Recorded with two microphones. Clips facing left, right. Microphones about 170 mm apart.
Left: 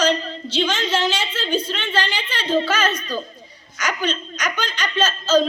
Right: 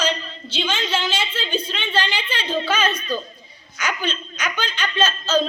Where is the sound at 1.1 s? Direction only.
10° right (ahead or behind).